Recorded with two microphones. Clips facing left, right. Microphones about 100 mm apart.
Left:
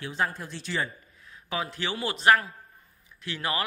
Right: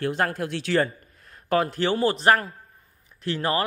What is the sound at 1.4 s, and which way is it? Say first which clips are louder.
A man's voice: right 9 dB; 50° right (ahead or behind).